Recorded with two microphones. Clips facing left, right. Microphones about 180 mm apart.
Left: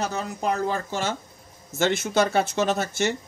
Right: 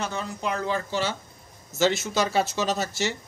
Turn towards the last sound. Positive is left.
turn(degrees=55)  # may be behind; listen again after turning